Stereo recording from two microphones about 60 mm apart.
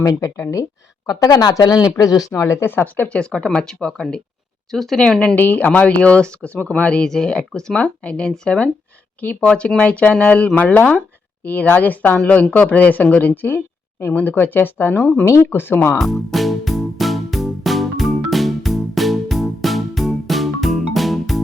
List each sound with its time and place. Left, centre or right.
0.0 s speech: left
2.3 s speech: left
2.6 s speech: left
3.2 s speech: centre
5.2 s speech: left
14.9 s speech: centre
15.4 s speech: left
16.0 s music: centre